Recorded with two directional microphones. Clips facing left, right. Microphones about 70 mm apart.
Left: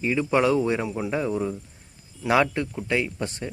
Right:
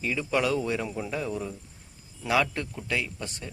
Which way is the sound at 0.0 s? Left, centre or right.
Left.